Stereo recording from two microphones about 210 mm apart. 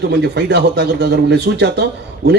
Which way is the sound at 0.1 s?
50° right (ahead or behind).